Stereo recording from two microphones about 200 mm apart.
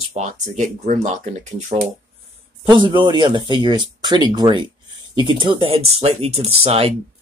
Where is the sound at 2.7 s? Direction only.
25° right (ahead or behind).